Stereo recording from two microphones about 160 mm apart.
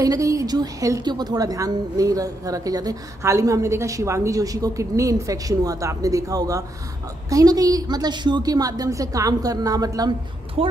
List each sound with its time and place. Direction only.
0.0 s a woman's voice: 20° right (ahead or behind)
10.6 s speech: 35° right (ahead or behind)